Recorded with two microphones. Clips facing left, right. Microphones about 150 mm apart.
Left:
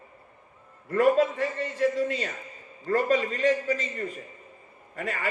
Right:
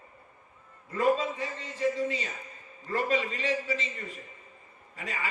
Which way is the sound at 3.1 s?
45° left (ahead or behind).